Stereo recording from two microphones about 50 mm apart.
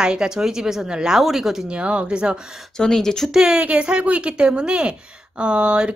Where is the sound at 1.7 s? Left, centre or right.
Right.